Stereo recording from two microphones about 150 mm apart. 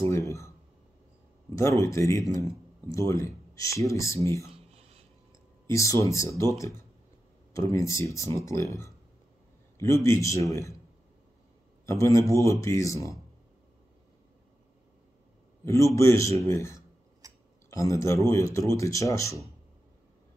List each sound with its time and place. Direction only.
1.5 s speech: 20° left (ahead or behind)
5.7 s speech: 20° left (ahead or behind)
11.8 s speech: 20° left (ahead or behind)
15.6 s speech: 20° left (ahead or behind)
17.2 s tick-tock: 25° right (ahead or behind)
17.6 s speech: 20° left (ahead or behind)